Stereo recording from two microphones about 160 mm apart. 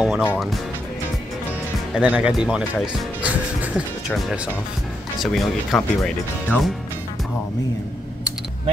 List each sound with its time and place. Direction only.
0.0 s music: centre (ahead or behind)
2.0 s speech: 10° right (ahead or behind)
5.2 s speech: centre (ahead or behind)